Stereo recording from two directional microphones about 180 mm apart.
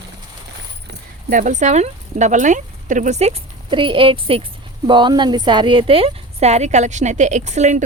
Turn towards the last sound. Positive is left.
turn(degrees=-40)  # may be behind; listen again after turning